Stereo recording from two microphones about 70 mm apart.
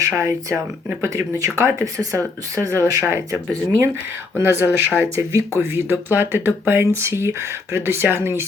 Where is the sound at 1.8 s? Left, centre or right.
Right.